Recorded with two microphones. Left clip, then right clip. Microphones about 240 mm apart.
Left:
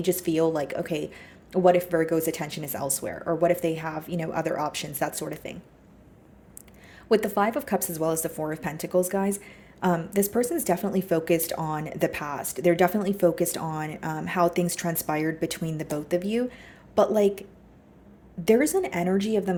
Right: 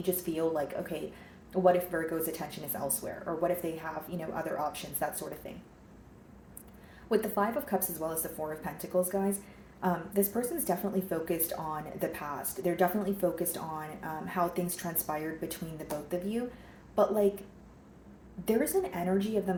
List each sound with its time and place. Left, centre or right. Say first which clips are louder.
0.0 s a woman's voice: left 8 dB; left
7.1 s a woman's voice: left 7 dB; left
18.4 s a woman's voice: left 8 dB; left